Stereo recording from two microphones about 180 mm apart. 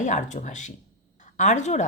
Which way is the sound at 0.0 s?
45° left (ahead or behind).